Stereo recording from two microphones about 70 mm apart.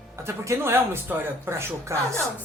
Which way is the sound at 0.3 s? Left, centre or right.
Right.